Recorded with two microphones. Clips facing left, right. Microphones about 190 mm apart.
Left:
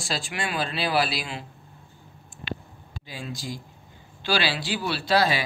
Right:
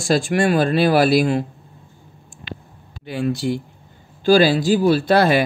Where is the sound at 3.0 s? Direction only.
65° right (ahead or behind).